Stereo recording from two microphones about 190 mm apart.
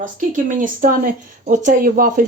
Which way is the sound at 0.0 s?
45° right (ahead or behind).